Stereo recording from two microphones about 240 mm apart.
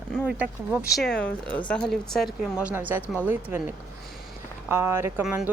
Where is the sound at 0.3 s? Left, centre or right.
Centre.